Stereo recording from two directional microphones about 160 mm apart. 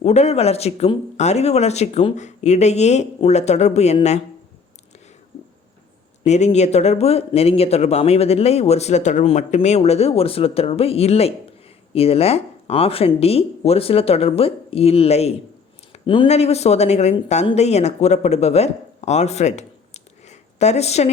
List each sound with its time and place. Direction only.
0.0 s speech: 45° left (ahead or behind)
6.2 s speech: 45° left (ahead or behind)
16.0 s speech: 30° left (ahead or behind)
16.3 s speech: 40° left (ahead or behind)
20.2 s a sound: 45° left (ahead or behind)